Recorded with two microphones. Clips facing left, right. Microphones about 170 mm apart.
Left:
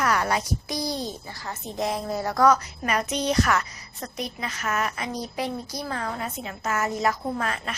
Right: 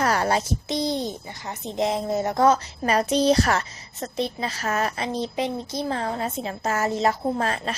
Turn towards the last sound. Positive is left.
turn(degrees=-30)  # may be behind; listen again after turning